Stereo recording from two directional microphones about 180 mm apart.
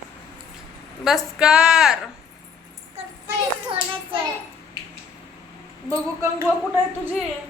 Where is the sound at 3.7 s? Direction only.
30° right (ahead or behind).